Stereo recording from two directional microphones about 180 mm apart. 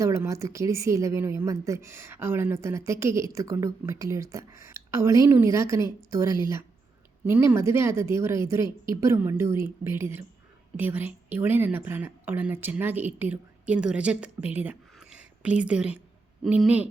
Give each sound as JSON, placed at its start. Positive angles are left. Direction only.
{"t": 0.0, "sound": "a woman's voice", "side_deg": -15}